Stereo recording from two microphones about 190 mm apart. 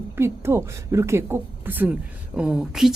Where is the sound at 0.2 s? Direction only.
15° right (ahead or behind).